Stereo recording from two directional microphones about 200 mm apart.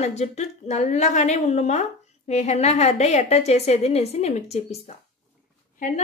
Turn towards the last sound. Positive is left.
turn(degrees=40)  # may be behind; listen again after turning